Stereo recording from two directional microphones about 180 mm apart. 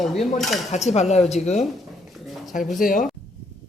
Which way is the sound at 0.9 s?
40° left (ahead or behind).